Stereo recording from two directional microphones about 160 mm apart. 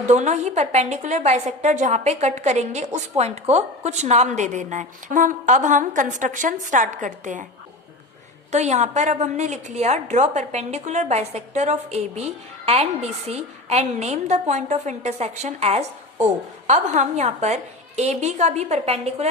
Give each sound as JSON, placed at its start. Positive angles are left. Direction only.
{"t": 0.1, "sound": "a woman's voice", "side_deg": -45}
{"t": 8.5, "sound": "a woman's voice", "side_deg": -45}